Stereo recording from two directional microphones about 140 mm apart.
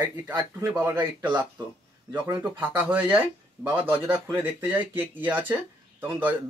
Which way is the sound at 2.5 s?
10° right (ahead or behind).